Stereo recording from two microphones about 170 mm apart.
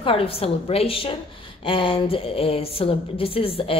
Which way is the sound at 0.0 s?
35° left (ahead or behind).